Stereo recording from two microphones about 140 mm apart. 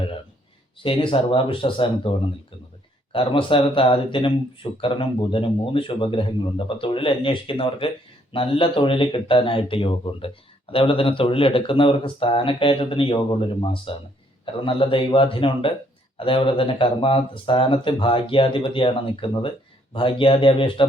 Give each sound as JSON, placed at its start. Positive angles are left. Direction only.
{"t": 0.8, "sound": "speech", "side_deg": 40}